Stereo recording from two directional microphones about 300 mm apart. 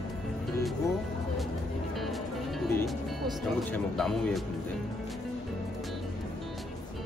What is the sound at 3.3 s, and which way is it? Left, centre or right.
Speech, centre.